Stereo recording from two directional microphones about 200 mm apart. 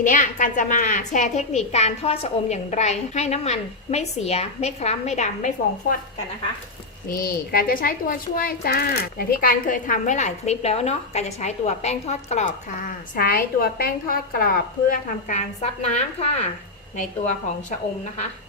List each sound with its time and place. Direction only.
0.0 s a woman's voice: 40° left (ahead or behind)
7.1 s a woman's voice: 45° left (ahead or behind)
17.7 s a woman's voice: 40° left (ahead or behind)